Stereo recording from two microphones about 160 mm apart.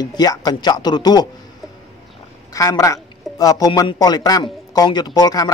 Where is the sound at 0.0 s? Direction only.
25° left (ahead or behind).